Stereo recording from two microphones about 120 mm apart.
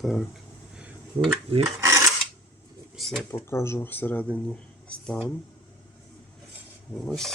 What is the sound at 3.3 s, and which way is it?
Speech, 20° left (ahead or behind).